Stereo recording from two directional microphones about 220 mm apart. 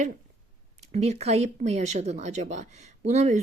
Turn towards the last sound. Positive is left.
turn(degrees=-30)  # may be behind; listen again after turning